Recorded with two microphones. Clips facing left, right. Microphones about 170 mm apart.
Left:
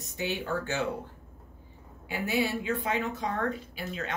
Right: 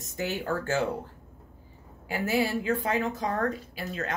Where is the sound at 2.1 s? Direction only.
40° right (ahead or behind).